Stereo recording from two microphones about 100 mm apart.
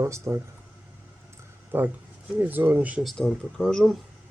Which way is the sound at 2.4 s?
20° right (ahead or behind).